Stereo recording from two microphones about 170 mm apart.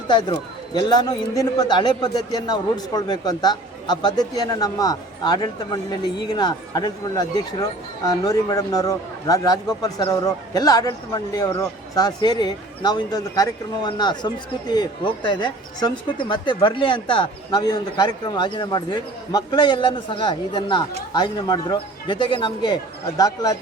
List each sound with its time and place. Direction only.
0.1 s a man's voice: 30° left (ahead or behind)